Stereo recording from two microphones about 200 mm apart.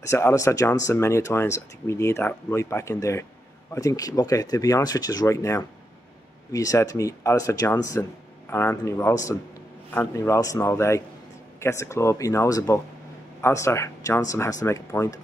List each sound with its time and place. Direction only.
0.1 s speech: 15° left (ahead or behind)